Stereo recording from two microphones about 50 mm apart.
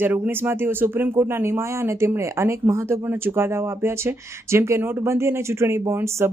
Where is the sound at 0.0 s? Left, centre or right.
Right.